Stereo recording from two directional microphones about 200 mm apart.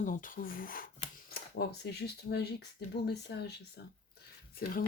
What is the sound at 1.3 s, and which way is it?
Speech, 55° left (ahead or behind).